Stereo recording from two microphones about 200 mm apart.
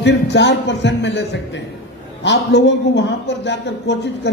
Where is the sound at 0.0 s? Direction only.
60° left (ahead or behind).